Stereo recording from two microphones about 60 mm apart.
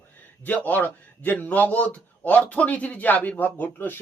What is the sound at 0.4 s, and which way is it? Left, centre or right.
A man's voice, left.